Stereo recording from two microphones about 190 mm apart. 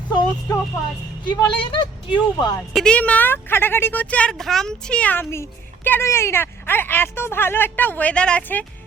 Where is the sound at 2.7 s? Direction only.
5° left (ahead or behind).